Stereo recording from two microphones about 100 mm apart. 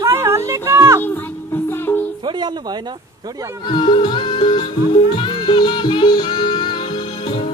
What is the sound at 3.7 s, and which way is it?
Music, 55° left (ahead or behind).